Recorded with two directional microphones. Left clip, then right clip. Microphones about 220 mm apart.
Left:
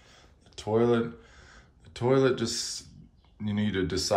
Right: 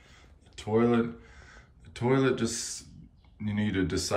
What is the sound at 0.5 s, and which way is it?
Speech, 10° left (ahead or behind).